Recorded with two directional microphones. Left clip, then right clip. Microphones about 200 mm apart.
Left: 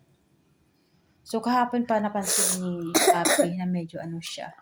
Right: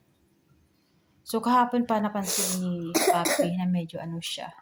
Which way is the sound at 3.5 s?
20° right (ahead or behind).